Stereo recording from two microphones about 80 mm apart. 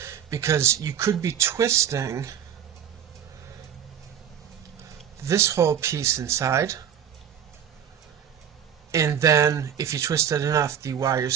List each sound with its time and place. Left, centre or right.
0.0 s speech: right
5.2 s speech: right
8.9 s speech: right